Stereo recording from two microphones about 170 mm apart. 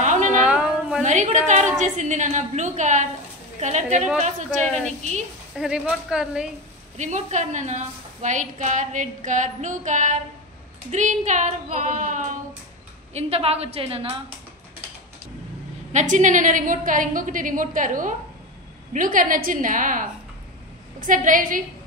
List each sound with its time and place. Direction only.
0.0 s a sound: 45° right (ahead or behind)
0.5 s a sound: 5° right (ahead or behind)
1.0 s a woman's voice: 45° right (ahead or behind)
5.6 s speech: 5° right (ahead or behind)
7.0 s a woman's voice: 45° right (ahead or behind)
15.9 s a woman's voice: 45° right (ahead or behind)